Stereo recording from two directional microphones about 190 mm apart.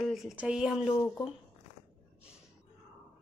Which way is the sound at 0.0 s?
Centre (ahead or behind).